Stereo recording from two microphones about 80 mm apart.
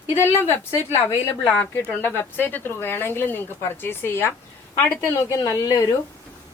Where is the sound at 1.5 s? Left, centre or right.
Left.